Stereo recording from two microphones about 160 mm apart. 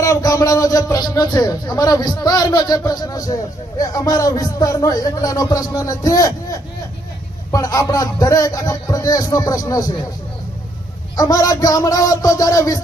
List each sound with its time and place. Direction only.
0.0 s a man's voice: 20° left (ahead or behind)
11.2 s a man's voice: 20° left (ahead or behind)